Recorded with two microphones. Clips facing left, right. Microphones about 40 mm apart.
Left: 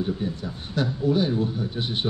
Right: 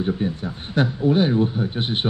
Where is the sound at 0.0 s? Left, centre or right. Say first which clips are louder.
Right 4 dB; right.